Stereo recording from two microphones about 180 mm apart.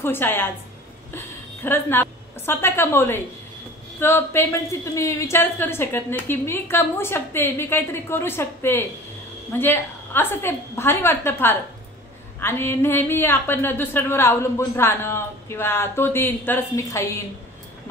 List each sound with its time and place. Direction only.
0.0 s a woman's voice: 10° left (ahead or behind)